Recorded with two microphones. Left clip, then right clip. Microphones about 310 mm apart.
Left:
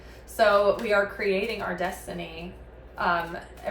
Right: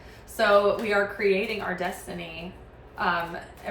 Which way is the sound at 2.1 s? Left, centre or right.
Centre.